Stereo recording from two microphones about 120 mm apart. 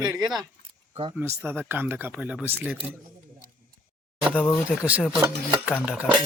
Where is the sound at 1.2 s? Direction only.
15° right (ahead or behind).